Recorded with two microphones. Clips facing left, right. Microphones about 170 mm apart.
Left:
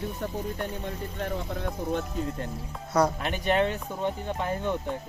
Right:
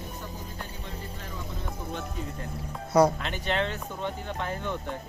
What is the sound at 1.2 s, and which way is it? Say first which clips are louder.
Speech: left 10 dB; 65° left (ahead or behind).